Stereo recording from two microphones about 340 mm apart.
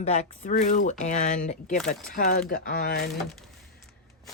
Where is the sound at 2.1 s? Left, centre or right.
Left.